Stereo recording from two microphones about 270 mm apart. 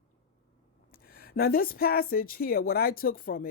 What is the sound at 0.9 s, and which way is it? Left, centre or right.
Speech, left.